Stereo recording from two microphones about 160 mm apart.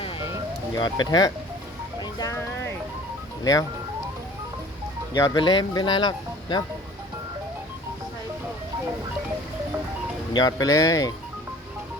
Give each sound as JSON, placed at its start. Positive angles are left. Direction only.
{"t": 0.8, "sound": "speech", "side_deg": 25}
{"t": 3.4, "sound": "speech", "side_deg": 20}
{"t": 5.1, "sound": "speech", "side_deg": 20}
{"t": 10.3, "sound": "speech", "side_deg": 25}